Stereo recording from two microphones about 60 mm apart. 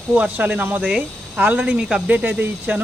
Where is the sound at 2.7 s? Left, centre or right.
Right.